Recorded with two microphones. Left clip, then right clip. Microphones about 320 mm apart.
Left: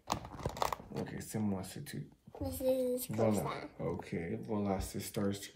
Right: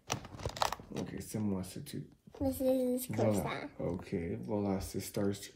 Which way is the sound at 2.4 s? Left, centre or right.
Centre.